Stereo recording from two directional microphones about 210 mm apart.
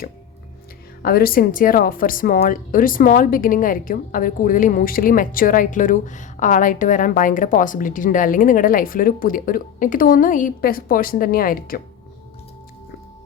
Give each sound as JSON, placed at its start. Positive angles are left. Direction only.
{"t": 1.0, "sound": "a woman's voice", "side_deg": 45}